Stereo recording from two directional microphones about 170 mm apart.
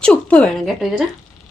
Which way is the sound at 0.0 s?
5° left (ahead or behind).